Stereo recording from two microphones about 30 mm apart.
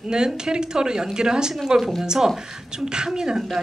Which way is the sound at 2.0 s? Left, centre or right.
Centre.